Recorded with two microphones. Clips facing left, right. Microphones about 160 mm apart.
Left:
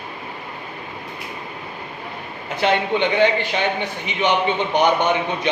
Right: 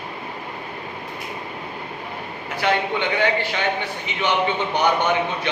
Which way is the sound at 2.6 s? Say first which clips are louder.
Left 3 dB; 20° left (ahead or behind).